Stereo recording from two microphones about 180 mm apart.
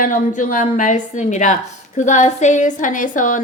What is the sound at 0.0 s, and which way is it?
A woman's voice, 50° left (ahead or behind).